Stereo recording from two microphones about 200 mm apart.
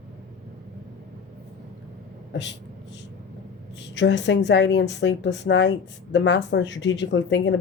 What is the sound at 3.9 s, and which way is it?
Speech, 65° left (ahead or behind).